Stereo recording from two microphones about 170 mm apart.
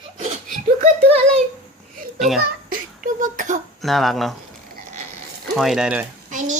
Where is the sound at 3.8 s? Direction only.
Centre (ahead or behind).